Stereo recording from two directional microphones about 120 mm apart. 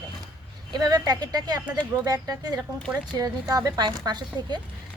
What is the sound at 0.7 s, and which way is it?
Speech, 35° right (ahead or behind).